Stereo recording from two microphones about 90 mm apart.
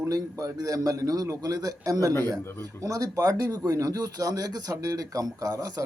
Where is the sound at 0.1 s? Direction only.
40° right (ahead or behind).